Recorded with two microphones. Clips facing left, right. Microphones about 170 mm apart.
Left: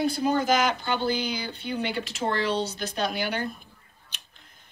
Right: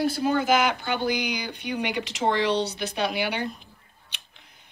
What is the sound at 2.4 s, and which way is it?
Speech, 70° right (ahead or behind).